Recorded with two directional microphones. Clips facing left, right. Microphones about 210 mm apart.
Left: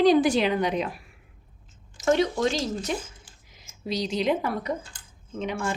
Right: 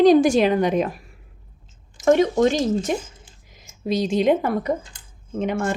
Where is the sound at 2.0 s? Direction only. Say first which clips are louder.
Right 6 dB; 50° right (ahead or behind).